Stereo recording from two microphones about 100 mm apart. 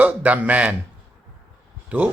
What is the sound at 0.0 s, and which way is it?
Speech, 15° right (ahead or behind).